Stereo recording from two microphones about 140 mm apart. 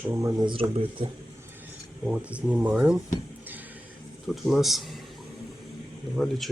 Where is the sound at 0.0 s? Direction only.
20° right (ahead or behind).